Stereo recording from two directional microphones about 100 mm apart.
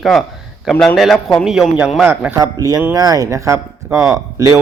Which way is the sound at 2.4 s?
35° right (ahead or behind).